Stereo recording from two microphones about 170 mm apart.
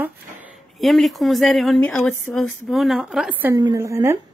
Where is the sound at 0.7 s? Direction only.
Centre (ahead or behind).